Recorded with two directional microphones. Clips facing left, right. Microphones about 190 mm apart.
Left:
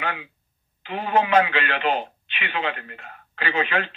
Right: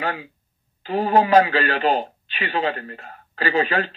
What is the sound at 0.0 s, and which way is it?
A man's voice, 35° right (ahead or behind).